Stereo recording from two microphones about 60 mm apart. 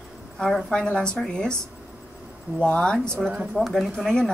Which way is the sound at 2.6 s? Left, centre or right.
Centre.